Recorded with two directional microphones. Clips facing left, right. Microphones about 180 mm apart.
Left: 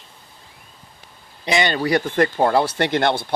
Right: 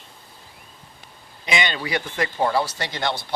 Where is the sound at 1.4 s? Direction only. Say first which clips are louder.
Left 6 dB; 40° left (ahead or behind); by 3.2 s 60° left (ahead or behind).